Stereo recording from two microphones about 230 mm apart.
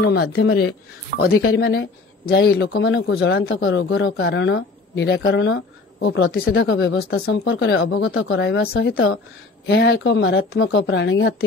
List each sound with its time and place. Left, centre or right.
0.1 s speech: left
1.1 s speech: right
1.6 s speech: left
7.3 s speech: left